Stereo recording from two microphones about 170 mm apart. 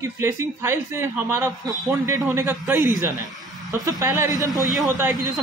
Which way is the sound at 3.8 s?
20° right (ahead or behind).